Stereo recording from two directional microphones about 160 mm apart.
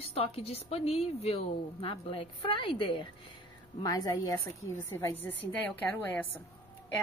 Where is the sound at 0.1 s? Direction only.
40° left (ahead or behind).